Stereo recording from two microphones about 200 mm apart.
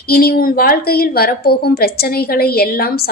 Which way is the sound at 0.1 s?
50° left (ahead or behind).